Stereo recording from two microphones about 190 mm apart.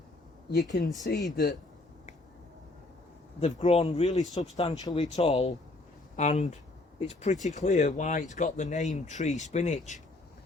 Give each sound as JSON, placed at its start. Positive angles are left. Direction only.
{"t": 0.5, "sound": "speech", "side_deg": 60}
{"t": 3.4, "sound": "speech", "side_deg": 35}
{"t": 4.8, "sound": "speech", "side_deg": 20}